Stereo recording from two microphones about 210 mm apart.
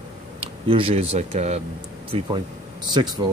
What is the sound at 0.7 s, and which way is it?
Speech, 25° right (ahead or behind).